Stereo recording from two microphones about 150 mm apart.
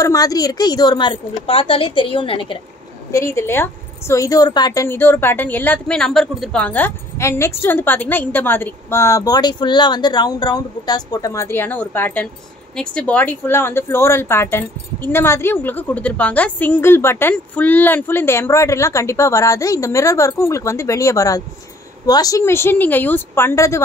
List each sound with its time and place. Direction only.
0.0 s a woman's voice: 25° left (ahead or behind)
3.1 s a woman's voice: 20° left (ahead or behind)
4.8 s speech: 15° left (ahead or behind)